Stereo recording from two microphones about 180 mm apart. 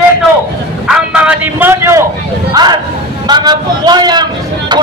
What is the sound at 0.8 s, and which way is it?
Speech, 5° right (ahead or behind).